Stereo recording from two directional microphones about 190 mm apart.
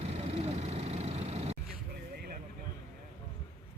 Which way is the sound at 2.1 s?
55° right (ahead or behind).